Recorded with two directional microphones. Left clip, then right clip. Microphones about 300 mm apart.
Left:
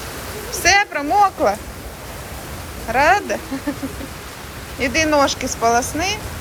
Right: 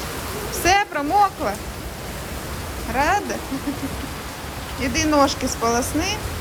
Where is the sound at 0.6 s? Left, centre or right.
Centre.